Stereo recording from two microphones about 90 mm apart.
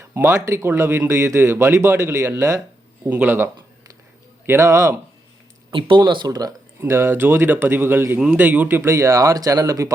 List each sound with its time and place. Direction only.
0.1 s speech: 30° right (ahead or behind)
3.1 s speech: 20° right (ahead or behind); by 4.9 s 35° right (ahead or behind)
6.0 s speech: 60° right (ahead or behind)
6.2 s speech: 45° right (ahead or behind)